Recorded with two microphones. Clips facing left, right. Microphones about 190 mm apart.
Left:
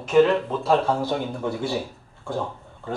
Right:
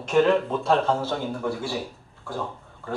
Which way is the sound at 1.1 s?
15° left (ahead or behind).